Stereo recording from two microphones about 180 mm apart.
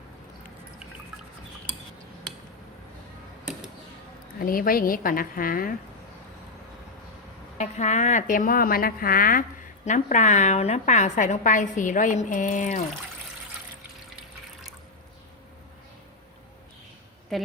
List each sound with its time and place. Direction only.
4.4 s a woman's voice: 50° left (ahead or behind)
7.6 s a woman's voice: 40° left (ahead or behind)
17.3 s a woman's voice: centre (ahead or behind)